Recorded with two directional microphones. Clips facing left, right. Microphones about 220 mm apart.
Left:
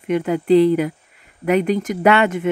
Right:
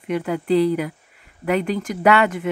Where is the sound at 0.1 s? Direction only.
20° left (ahead or behind).